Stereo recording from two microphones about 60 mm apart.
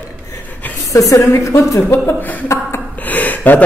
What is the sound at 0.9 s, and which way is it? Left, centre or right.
Speech, left.